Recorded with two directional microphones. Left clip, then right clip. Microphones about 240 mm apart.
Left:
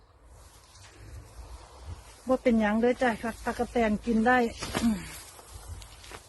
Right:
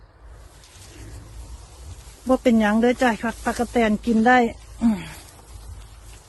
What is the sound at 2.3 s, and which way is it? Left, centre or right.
Speech, right.